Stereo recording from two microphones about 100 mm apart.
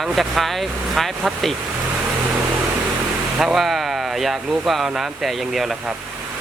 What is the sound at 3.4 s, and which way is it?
Speech, 5° right (ahead or behind).